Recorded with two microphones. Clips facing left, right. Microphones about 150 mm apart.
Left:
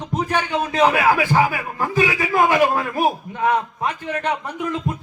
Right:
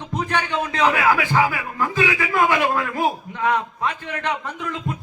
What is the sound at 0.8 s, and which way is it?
A man's voice, 25° left (ahead or behind).